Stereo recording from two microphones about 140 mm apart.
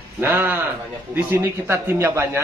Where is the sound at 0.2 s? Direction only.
15° right (ahead or behind).